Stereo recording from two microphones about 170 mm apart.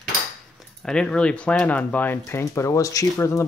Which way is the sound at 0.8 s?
5° left (ahead or behind).